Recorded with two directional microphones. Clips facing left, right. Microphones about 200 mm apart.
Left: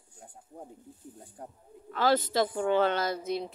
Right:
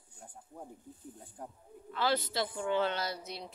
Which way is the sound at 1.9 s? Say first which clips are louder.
Left 6 dB; 45° left (ahead or behind).